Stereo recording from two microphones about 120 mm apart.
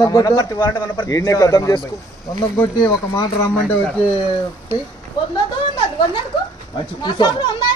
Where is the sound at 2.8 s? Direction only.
25° left (ahead or behind).